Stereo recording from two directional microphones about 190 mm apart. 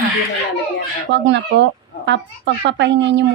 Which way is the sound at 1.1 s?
70° right (ahead or behind).